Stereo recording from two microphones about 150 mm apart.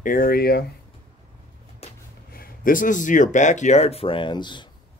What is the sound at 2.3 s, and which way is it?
Speech, 70° left (ahead or behind).